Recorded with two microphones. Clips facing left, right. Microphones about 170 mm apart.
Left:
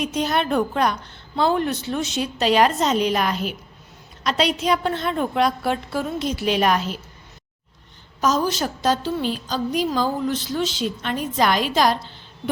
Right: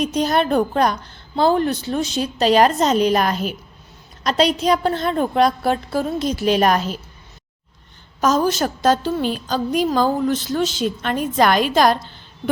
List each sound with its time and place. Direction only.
0.0 s a woman's voice: 40° right (ahead or behind)
8.2 s a woman's voice: 50° right (ahead or behind)